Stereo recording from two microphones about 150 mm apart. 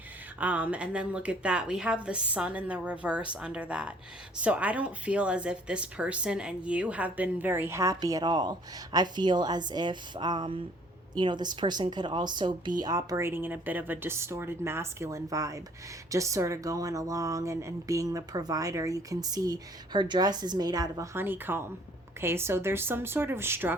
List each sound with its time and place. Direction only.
0.3 s speech: 10° right (ahead or behind)